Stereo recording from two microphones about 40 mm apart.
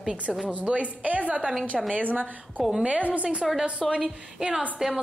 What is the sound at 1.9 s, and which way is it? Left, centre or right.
Speech, right.